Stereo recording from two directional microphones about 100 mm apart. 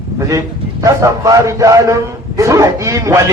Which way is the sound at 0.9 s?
35° right (ahead or behind).